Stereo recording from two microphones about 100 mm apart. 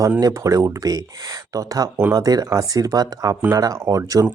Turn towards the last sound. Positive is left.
turn(degrees=-35)  # may be behind; listen again after turning